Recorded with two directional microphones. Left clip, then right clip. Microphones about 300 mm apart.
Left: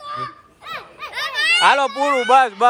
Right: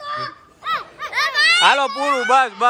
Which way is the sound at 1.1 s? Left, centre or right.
Centre.